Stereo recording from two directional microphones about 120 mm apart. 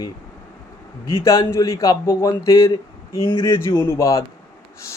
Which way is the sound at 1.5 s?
25° left (ahead or behind).